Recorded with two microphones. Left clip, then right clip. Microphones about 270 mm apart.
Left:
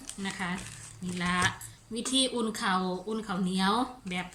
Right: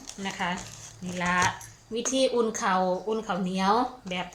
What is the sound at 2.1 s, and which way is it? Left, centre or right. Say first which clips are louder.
A woman's voice: right 4 dB; centre.